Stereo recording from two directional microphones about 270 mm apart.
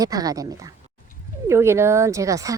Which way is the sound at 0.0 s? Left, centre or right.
Centre.